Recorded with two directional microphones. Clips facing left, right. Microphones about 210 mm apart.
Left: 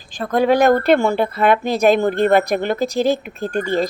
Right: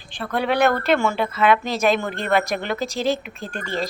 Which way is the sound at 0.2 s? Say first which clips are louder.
Left 5 dB; 40° left (ahead or behind).